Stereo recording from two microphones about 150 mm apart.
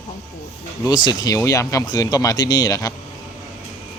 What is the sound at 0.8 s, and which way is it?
Speech, 25° left (ahead or behind).